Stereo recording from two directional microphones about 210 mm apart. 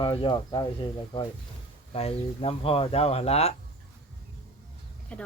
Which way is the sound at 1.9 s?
25° left (ahead or behind).